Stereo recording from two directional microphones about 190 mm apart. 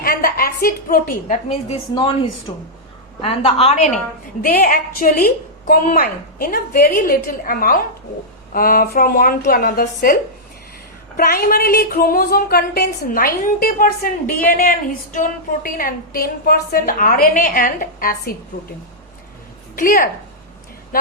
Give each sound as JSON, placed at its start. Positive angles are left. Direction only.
{"t": 0.0, "sound": "a woman's voice", "side_deg": 50}
{"t": 1.5, "sound": "a woman's voice", "side_deg": 35}
{"t": 2.5, "sound": "a woman's voice", "side_deg": 20}
{"t": 4.4, "sound": "speech", "side_deg": 50}
{"t": 11.2, "sound": "speech", "side_deg": 50}
{"t": 19.7, "sound": "speech", "side_deg": 45}